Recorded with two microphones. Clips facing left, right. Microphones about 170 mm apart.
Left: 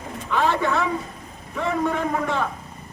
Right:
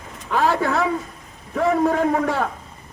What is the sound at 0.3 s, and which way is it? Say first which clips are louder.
A woman's voice: right 2 dB; 40° right (ahead or behind).